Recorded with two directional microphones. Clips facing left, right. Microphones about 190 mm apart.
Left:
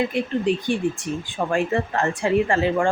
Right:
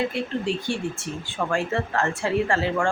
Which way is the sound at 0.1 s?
15° left (ahead or behind).